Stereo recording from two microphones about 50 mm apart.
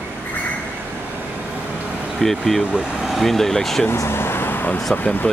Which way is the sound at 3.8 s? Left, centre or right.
Left.